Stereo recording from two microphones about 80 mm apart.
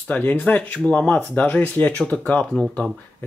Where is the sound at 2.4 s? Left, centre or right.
Centre.